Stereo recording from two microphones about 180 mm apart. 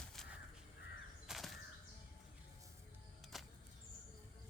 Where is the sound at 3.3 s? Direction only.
Centre (ahead or behind).